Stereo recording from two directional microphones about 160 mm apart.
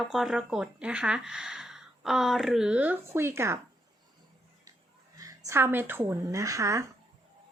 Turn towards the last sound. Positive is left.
turn(degrees=-20)  # may be behind; listen again after turning